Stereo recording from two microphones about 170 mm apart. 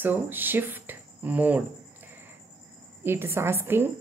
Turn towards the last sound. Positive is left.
turn(degrees=-10)  # may be behind; listen again after turning